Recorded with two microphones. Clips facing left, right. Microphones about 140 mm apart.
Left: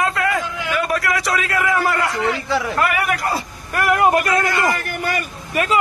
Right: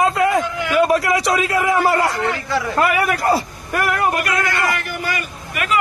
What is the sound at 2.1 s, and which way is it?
Speech, centre (ahead or behind).